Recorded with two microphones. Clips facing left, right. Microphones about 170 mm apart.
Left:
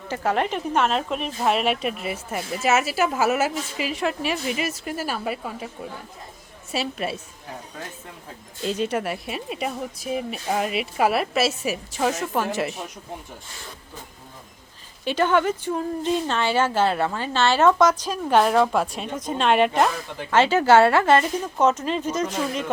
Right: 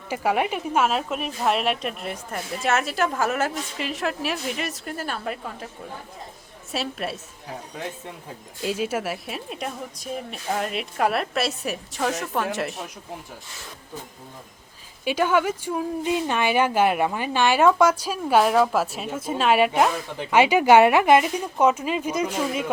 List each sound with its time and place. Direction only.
0.1 s a woman's voice: 10° right (ahead or behind); by 5.6 s 5° left (ahead or behind)
6.7 s a woman's voice: centre (ahead or behind)
8.6 s a woman's voice: 5° right (ahead or behind)
15.0 s speech: 10° right (ahead or behind)